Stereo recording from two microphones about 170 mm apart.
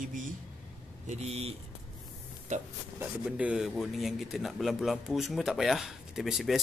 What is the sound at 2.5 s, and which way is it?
Speech, 45° right (ahead or behind).